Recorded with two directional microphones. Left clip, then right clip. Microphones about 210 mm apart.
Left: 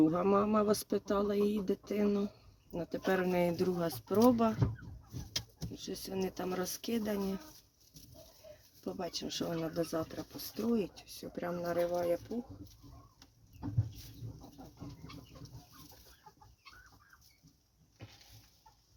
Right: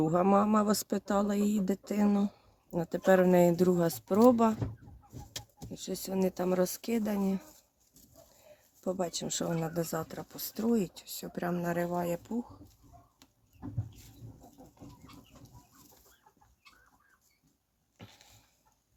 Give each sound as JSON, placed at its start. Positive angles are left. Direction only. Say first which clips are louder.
{"t": 0.0, "sound": "speech", "louder": "right 3 dB", "side_deg": -25}
{"t": 5.7, "sound": "speech", "louder": "right 5 dB", "side_deg": -35}
{"t": 8.8, "sound": "speech", "louder": "right 6 dB", "side_deg": -30}